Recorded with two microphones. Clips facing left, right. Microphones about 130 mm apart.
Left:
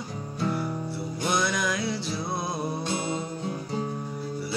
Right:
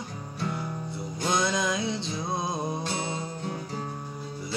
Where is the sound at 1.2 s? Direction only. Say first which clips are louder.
Even; 20° right (ahead or behind).